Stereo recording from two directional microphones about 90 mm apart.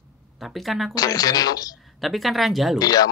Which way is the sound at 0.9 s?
45° left (ahead or behind).